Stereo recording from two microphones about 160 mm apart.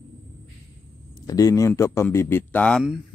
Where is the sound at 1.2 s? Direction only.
20° left (ahead or behind).